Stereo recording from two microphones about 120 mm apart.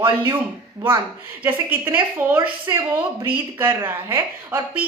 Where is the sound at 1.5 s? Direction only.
20° right (ahead or behind).